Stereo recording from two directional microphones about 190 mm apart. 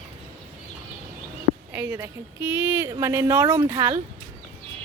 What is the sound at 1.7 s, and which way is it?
A woman's voice, 15° right (ahead or behind).